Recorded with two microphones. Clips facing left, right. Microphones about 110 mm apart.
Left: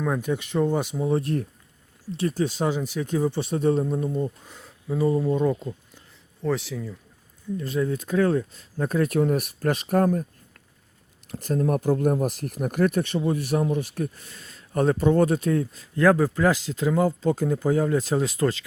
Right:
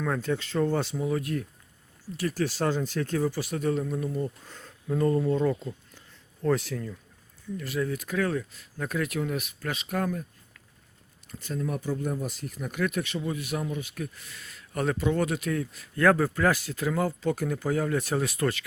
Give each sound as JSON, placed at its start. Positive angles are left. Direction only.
{"t": 0.0, "sound": "speech", "side_deg": 15}
{"t": 1.0, "sound": "speech", "side_deg": 30}
{"t": 6.4, "sound": "speech", "side_deg": 0}
{"t": 7.5, "sound": "speech", "side_deg": 25}
{"t": 11.4, "sound": "speech", "side_deg": 45}